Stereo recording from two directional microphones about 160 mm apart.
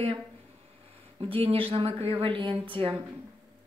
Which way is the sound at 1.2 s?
35° right (ahead or behind).